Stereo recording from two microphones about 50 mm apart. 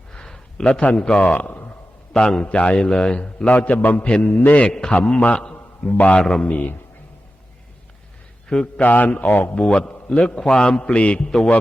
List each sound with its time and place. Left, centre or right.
0.1 s a sound: centre
0.9 s a man's voice: centre
1.4 s a sound: left
2.4 s a man's voice: left
2.8 s a man's voice: centre; by 3.9 s left
3.9 s a man's voice: left
4.2 s a man's voice: left
4.7 s a man's voice: centre
5.9 s a man's voice: left
6.1 s a man's voice: centre
6.5 s a man's voice: left
8.6 s a man's voice: left
9.6 s a man's voice: left